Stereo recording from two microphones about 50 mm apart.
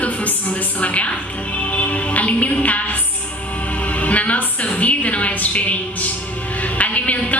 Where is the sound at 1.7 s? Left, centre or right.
Left.